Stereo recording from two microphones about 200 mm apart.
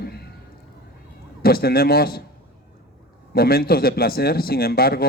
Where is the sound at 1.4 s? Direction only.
50° left (ahead or behind).